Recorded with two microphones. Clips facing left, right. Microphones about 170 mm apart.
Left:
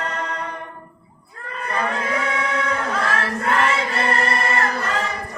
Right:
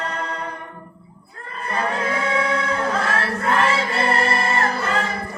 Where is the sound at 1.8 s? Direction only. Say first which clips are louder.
Right 1 dB; 30° right (ahead or behind).